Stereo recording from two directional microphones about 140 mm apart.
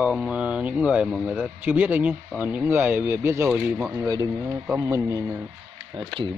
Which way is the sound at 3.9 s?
25° right (ahead or behind).